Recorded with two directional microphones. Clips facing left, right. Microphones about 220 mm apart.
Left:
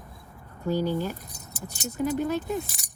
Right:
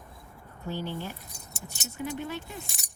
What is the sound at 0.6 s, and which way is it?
Speech, 40° left (ahead or behind).